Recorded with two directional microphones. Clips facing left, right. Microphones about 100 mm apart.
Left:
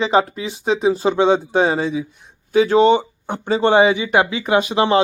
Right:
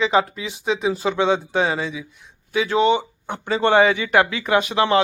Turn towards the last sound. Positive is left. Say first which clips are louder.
# left 2 dB
turn(degrees=25)  # may be behind; listen again after turning